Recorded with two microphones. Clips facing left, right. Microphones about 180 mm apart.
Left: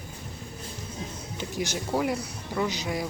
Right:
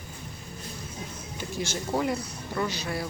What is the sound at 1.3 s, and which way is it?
Music, 15° left (ahead or behind).